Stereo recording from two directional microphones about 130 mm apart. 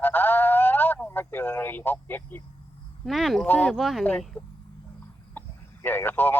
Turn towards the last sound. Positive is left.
turn(degrees=15)  # may be behind; listen again after turning